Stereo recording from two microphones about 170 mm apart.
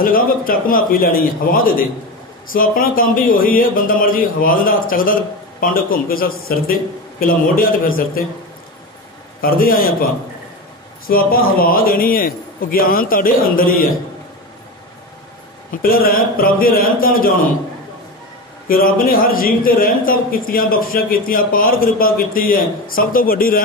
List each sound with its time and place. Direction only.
0.0 s a man's voice: 55° left (ahead or behind)
9.4 s a man's voice: 60° left (ahead or behind)
11.1 s a man's voice: 60° left (ahead or behind)
15.7 s a man's voice: 60° left (ahead or behind)
18.7 s a man's voice: 60° left (ahead or behind)